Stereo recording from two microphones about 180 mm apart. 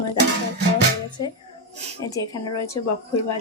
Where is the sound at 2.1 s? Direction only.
20° left (ahead or behind).